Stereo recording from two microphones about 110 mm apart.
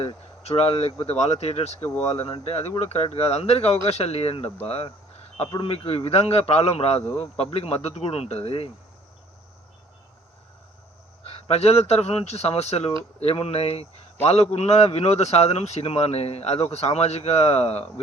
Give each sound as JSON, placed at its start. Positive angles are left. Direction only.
{"t": 0.0, "sound": "a man's voice", "side_deg": 65}
{"t": 11.2, "sound": "a man's voice", "side_deg": 70}